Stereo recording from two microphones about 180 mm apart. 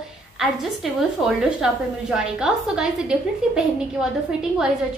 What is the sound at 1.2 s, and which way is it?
A woman's voice, 5° right (ahead or behind).